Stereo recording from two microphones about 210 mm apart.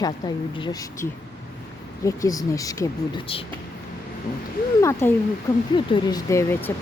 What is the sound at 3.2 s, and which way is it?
Speech, 25° left (ahead or behind).